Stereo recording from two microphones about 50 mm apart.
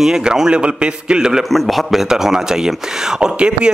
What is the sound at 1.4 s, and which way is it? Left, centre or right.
A man's voice, centre.